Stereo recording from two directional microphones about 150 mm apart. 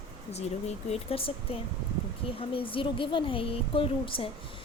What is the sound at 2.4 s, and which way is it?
A woman's voice, 35° left (ahead or behind).